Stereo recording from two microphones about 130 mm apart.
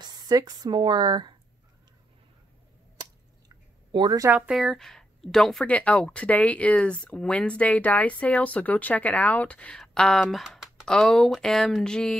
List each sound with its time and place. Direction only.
0.0 s speech: 30° right (ahead or behind)
3.0 s a sound: 35° right (ahead or behind)
4.3 s speech: 10° right (ahead or behind)